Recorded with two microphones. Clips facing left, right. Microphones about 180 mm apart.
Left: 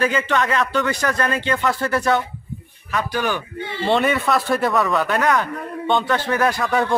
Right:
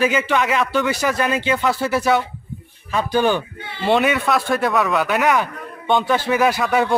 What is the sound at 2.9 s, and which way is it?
Speech, 25° right (ahead or behind).